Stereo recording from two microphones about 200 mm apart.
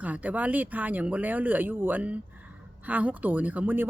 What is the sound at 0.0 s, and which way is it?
Speech, 5° right (ahead or behind).